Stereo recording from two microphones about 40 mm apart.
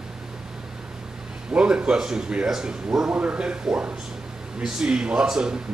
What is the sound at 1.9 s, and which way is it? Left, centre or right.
Speech, centre.